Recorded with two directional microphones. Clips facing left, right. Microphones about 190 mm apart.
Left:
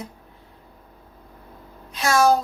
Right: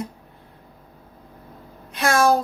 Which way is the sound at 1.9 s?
55° right (ahead or behind).